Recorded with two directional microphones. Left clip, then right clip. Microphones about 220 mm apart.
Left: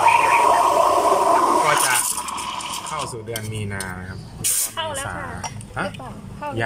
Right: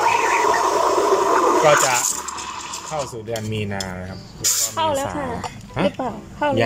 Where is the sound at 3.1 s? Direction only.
15° right (ahead or behind).